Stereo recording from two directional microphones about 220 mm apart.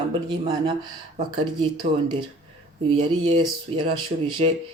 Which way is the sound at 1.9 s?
35° right (ahead or behind).